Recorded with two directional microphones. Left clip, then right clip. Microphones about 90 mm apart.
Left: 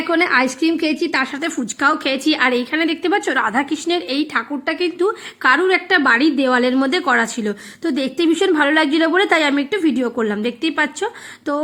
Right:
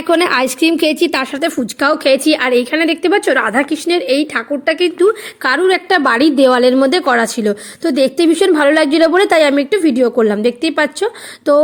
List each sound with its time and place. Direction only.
0.1 s a woman's voice: 65° right (ahead or behind); by 4.9 s 30° right (ahead or behind)
5.4 s a woman's voice: 50° right (ahead or behind)
6.3 s a woman's voice: 60° right (ahead or behind)
6.8 s a woman's voice: 40° right (ahead or behind)